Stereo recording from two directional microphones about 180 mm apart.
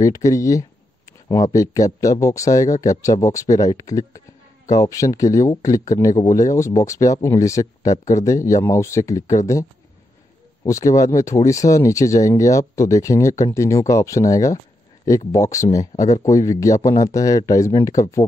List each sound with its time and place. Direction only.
0.0 s speech: 20° left (ahead or behind)